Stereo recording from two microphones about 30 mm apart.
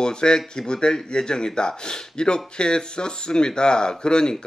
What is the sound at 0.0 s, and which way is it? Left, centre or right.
Speech, left.